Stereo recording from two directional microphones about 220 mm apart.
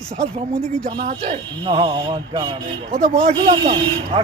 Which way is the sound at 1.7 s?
25° right (ahead or behind).